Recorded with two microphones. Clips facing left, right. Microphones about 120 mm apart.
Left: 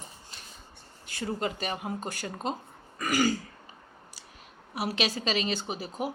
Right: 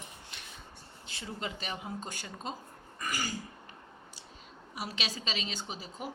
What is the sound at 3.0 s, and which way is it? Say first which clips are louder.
Throat clearing: left 10 dB; 90° left.